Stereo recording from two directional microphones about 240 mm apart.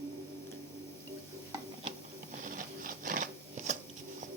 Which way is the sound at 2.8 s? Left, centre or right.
Right.